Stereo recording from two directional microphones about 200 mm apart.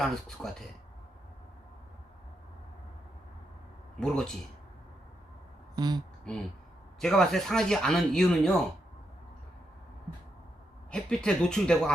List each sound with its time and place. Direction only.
0.0 s speech: centre (ahead or behind)
4.0 s speech: 5° left (ahead or behind)
5.7 s speech: 20° right (ahead or behind)
7.0 s speech: centre (ahead or behind)
10.9 s speech: 5° left (ahead or behind)